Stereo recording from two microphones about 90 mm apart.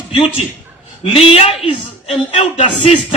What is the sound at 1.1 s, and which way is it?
Music, 90° left.